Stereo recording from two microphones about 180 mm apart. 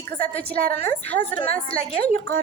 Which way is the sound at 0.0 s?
10° left (ahead or behind).